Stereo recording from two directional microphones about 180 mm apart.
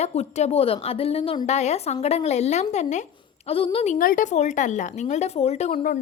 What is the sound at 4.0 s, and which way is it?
A woman's voice, 50° left (ahead or behind).